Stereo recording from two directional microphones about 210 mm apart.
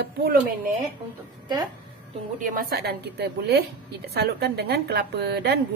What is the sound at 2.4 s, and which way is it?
A woman's voice, 40° right (ahead or behind).